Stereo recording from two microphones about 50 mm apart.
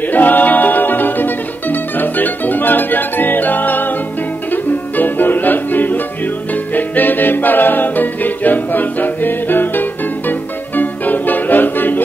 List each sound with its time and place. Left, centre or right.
0.1 s music: left